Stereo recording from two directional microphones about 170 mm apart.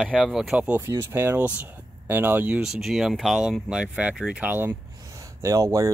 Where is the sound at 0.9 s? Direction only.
15° right (ahead or behind).